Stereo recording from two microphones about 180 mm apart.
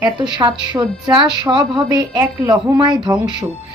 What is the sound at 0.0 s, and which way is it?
Speech, 25° right (ahead or behind).